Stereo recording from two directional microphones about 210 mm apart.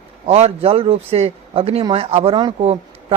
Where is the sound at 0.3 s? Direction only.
30° right (ahead or behind).